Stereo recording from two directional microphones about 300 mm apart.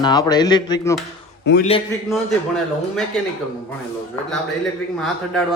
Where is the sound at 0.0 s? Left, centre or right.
Centre.